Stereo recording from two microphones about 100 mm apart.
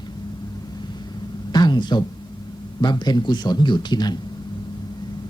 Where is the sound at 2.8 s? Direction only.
45° left (ahead or behind).